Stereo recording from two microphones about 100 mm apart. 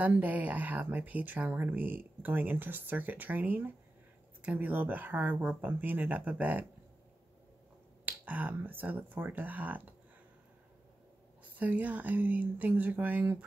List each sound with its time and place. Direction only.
0.0 s speech: 15° right (ahead or behind)
8.0 s speech: 15° right (ahead or behind)
11.5 s speech: 15° right (ahead or behind)